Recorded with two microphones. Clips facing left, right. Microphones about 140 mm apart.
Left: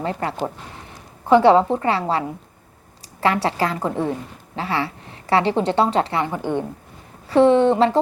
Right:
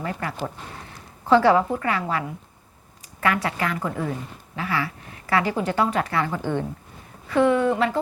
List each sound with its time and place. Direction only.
0.0 s a woman's voice: 30° left (ahead or behind)
1.2 s a woman's voice: 20° left (ahead or behind)
7.3 s a woman's voice: 30° left (ahead or behind)